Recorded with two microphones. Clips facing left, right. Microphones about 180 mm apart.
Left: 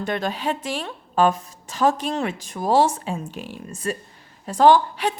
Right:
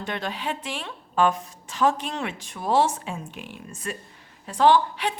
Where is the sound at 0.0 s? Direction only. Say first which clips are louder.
Left 5 dB; 45° left (ahead or behind).